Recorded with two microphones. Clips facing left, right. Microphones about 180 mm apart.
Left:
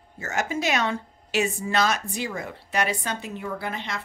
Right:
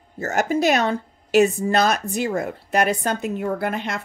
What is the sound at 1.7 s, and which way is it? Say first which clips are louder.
A woman's voice: right 5 dB; 55° right (ahead or behind).